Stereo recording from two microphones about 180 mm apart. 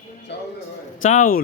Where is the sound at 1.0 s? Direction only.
45° left (ahead or behind).